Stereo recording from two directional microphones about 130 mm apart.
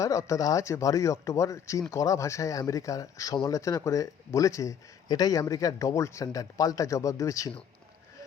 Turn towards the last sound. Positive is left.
turn(degrees=25)  # may be behind; listen again after turning